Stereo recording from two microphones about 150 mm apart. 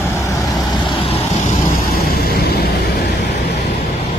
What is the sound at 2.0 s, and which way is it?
Vehicle, 90° left.